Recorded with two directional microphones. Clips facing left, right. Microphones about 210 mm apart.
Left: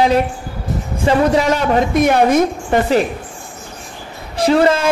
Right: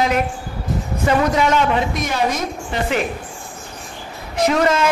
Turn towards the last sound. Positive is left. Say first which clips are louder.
# left 3 dB
turn(degrees=30)  # may be behind; listen again after turning